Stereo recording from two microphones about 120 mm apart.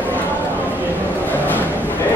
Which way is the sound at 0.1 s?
15° left (ahead or behind).